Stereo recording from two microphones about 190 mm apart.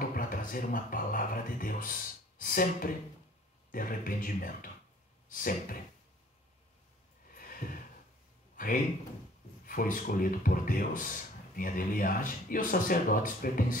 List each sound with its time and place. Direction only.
0.1 s speech: 45° left (ahead or behind)
7.3 s a sound: 50° left (ahead or behind)
9.7 s speech: 50° left (ahead or behind)